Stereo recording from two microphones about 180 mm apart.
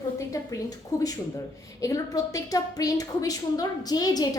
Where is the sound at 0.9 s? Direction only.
20° left (ahead or behind).